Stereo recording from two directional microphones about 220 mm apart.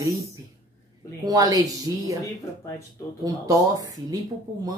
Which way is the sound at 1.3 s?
15° right (ahead or behind).